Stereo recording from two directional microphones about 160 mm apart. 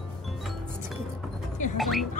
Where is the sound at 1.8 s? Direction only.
Centre (ahead or behind).